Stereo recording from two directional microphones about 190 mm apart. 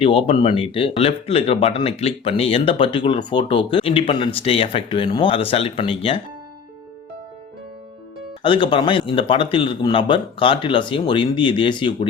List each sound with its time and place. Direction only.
0.0 s speech: 30° left (ahead or behind)
8.4 s speech: 25° left (ahead or behind)